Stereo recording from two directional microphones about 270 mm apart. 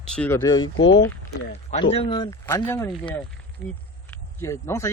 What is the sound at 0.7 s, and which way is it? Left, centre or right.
Speech, left.